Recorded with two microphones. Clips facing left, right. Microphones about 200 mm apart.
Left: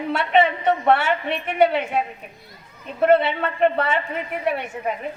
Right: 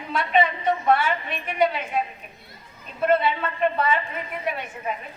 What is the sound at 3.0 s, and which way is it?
A woman's voice, 65° left (ahead or behind).